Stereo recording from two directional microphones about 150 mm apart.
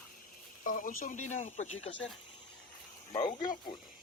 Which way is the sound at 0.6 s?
60° left (ahead or behind).